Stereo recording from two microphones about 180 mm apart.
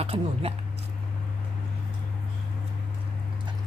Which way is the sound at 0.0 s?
35° right (ahead or behind).